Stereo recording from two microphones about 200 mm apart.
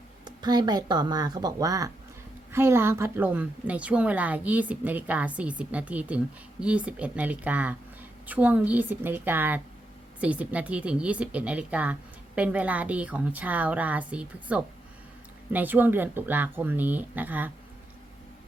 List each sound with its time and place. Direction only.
0.3 s a woman's voice: 20° right (ahead or behind)